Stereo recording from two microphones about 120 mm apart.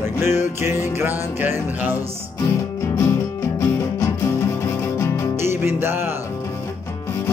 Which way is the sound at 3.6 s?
25° left (ahead or behind).